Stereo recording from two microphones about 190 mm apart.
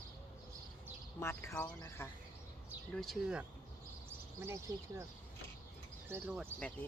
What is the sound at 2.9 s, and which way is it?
Speech, centre (ahead or behind).